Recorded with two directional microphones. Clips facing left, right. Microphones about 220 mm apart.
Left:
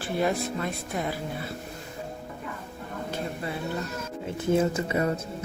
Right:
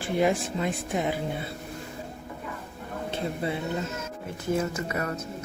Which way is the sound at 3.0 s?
25° right (ahead or behind).